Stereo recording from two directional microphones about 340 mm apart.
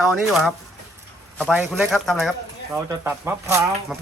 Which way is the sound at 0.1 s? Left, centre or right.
Centre.